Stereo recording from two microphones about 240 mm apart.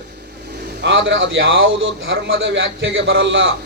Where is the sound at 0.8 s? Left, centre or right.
Right.